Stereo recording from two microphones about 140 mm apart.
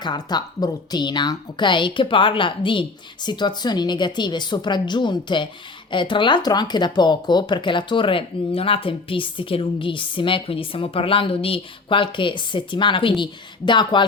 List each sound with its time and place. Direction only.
0.0 s speech: 30° left (ahead or behind)